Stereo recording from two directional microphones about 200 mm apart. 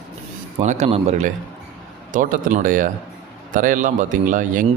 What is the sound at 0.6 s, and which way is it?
Speech, 35° right (ahead or behind).